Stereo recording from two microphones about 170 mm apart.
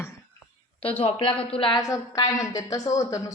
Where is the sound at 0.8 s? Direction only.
35° left (ahead or behind).